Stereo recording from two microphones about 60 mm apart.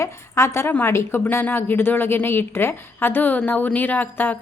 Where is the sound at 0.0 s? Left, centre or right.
Left.